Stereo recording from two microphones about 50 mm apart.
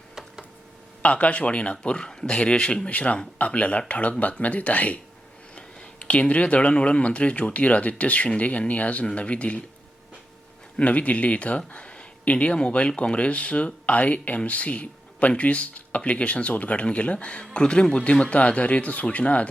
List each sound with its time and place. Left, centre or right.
1.0 s speech: left
10.8 s speech: left